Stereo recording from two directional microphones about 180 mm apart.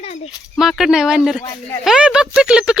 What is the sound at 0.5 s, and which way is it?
Speech, centre (ahead or behind).